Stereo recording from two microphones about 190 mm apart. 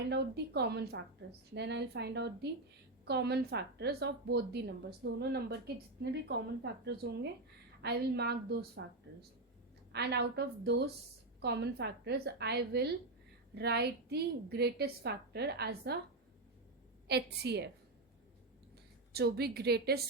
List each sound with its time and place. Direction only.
0.1 s a woman's voice: 60° right (ahead or behind)
9.9 s a woman's voice: 60° right (ahead or behind)
17.1 s a woman's voice: 60° right (ahead or behind)
19.1 s a woman's voice: 55° right (ahead or behind)